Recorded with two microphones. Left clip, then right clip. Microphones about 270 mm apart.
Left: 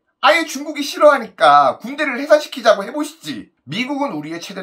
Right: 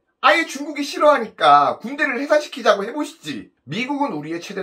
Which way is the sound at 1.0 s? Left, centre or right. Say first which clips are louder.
Left 4 dB; centre.